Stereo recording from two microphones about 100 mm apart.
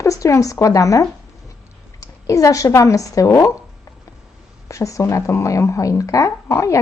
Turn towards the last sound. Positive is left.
turn(degrees=30)  # may be behind; listen again after turning